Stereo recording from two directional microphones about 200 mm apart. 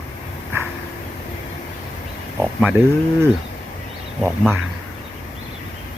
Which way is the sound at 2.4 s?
5° right (ahead or behind).